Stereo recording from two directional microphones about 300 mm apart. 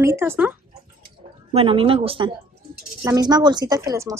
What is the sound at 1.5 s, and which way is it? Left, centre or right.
Speech, centre.